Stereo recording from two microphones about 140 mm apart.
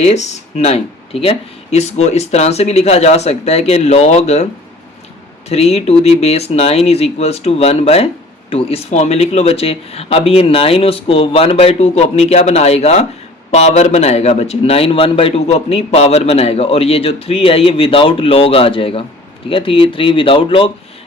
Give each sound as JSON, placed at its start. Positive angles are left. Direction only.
{"t": 0.0, "sound": "speech", "side_deg": 55}
{"t": 5.5, "sound": "speech", "side_deg": 50}